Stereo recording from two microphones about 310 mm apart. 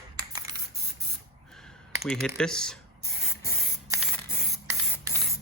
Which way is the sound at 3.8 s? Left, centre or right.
Centre.